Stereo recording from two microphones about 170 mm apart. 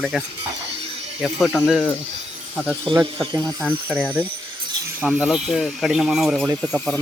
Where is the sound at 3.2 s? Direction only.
20° right (ahead or behind).